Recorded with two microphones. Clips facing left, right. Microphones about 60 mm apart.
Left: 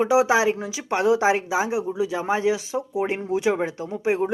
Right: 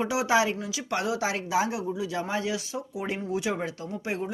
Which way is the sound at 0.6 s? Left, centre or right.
Left.